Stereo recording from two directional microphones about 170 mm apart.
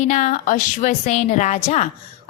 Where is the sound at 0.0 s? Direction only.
45° left (ahead or behind).